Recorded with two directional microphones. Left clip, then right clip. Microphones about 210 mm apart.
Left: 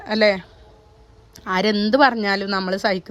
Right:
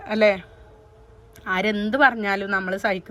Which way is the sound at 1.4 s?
20° left (ahead or behind).